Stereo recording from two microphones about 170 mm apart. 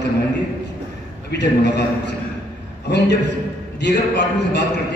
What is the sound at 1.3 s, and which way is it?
A man's voice, 85° left.